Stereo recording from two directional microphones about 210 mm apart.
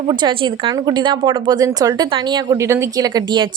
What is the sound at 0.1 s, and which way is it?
A woman's voice, 20° right (ahead or behind).